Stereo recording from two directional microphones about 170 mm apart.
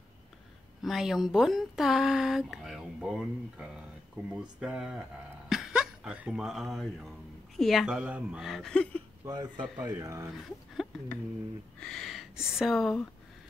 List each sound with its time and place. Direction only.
0.8 s speech: centre (ahead or behind)
5.5 s a sound: 5° right (ahead or behind)
7.5 s speech: centre (ahead or behind)
9.2 s speech: 20° right (ahead or behind)
10.7 s a sound: centre (ahead or behind)
11.8 s speech: centre (ahead or behind)